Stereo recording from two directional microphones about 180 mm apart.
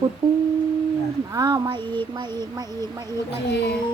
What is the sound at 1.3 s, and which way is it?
Child singing, 20° right (ahead or behind).